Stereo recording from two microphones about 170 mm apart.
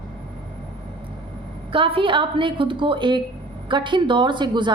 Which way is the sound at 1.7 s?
30° right (ahead or behind).